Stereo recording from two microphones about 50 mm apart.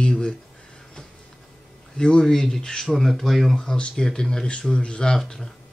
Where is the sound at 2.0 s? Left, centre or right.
Centre.